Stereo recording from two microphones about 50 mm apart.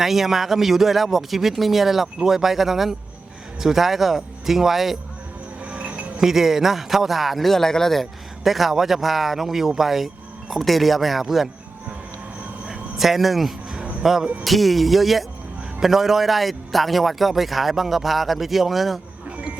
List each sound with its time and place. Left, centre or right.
0.0 s a man's voice: centre
5.6 s insect: right
6.1 s a man's voice: centre
8.4 s a man's voice: centre
12.6 s a sound: centre
14.0 s a man's voice: centre